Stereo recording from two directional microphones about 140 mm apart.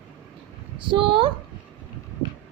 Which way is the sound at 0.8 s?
35° right (ahead or behind).